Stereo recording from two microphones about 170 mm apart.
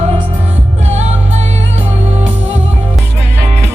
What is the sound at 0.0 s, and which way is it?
Music, 40° right (ahead or behind).